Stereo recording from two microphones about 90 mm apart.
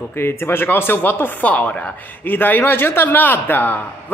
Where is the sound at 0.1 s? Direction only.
25° left (ahead or behind).